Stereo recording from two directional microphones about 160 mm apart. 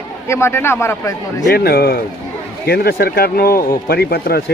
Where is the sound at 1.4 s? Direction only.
80° left.